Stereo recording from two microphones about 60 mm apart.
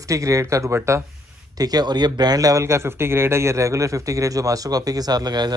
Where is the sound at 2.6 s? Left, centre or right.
Right.